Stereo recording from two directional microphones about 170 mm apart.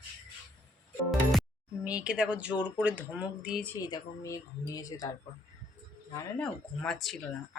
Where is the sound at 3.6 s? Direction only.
20° left (ahead or behind).